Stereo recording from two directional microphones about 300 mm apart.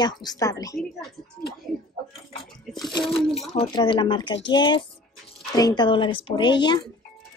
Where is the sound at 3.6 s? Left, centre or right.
Centre.